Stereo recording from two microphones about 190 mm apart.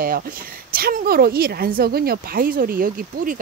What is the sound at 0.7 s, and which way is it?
A woman's voice, 50° right (ahead or behind).